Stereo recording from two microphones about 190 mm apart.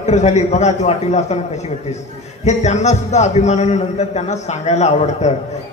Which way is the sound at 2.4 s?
35° left (ahead or behind).